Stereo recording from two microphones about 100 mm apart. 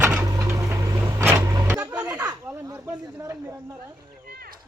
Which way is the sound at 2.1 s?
35° right (ahead or behind).